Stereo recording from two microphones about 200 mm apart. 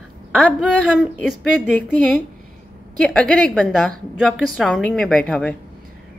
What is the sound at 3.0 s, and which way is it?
A woman's voice, 5° left (ahead or behind).